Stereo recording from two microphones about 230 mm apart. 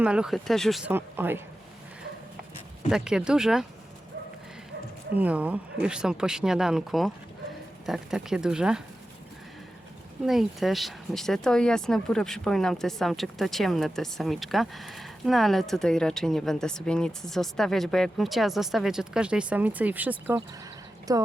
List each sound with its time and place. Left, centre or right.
0.0 s speech: centre
2.9 s speech: centre
5.1 s speech: centre
10.2 s a woman's voice: centre